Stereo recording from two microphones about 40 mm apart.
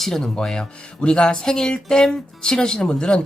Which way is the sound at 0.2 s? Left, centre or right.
Centre.